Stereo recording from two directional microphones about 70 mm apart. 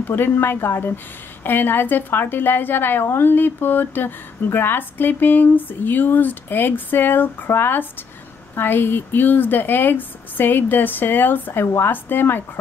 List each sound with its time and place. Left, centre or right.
0.0 s a woman's voice: left